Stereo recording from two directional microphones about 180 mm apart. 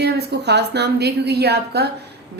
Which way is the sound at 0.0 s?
65° right (ahead or behind).